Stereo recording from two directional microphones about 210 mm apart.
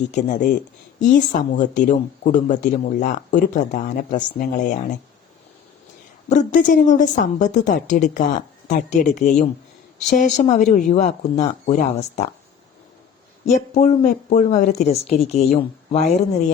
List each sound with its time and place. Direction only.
0.2 s speech: 35° left (ahead or behind)
6.2 s speech: 35° left (ahead or behind)
13.4 s speech: 35° left (ahead or behind)